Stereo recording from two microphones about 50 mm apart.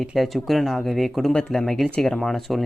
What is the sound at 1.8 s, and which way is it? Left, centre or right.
Speech, centre.